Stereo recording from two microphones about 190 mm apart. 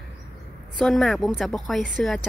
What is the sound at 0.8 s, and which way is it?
Speech, centre (ahead or behind).